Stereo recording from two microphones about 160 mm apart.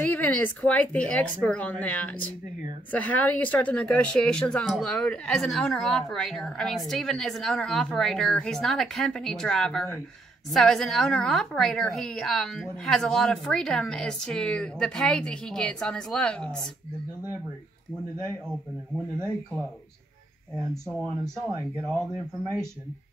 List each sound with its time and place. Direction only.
0.0 s speech: 10° left (ahead or behind)
21.2 s speech: 15° right (ahead or behind)